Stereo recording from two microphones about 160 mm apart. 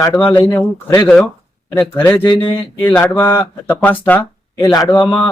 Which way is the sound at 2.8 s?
10° left (ahead or behind).